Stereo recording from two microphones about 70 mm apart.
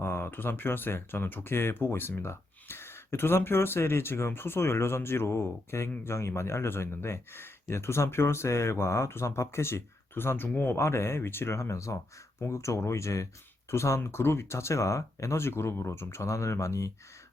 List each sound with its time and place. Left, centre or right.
0.0 s speech: left
10.8 s speech: left